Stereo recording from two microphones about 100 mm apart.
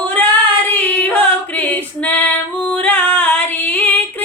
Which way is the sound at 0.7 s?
15° left (ahead or behind).